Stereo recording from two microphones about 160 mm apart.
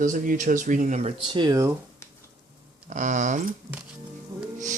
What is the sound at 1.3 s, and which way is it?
Speech, 25° right (ahead or behind).